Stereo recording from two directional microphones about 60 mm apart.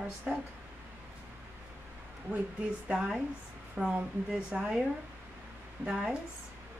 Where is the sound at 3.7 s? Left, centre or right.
Centre.